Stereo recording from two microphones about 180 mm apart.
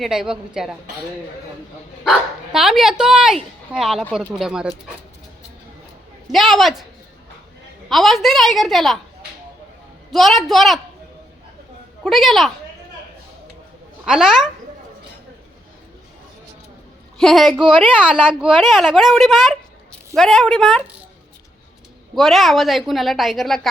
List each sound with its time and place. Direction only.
0.0 s speech: 5° right (ahead or behind)
2.0 s speech: centre (ahead or behind)
6.3 s speech: centre (ahead or behind)
7.9 s speech: centre (ahead or behind)
10.1 s speech: centre (ahead or behind)
12.0 s speech: centre (ahead or behind)
14.0 s speech: 5° right (ahead or behind)
17.2 s a woman's voice: centre (ahead or behind)
22.1 s speech: centre (ahead or behind)